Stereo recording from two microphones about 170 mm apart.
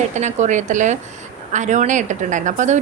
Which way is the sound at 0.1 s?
45° right (ahead or behind).